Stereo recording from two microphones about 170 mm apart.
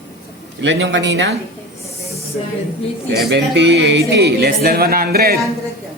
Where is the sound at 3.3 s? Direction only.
90° right.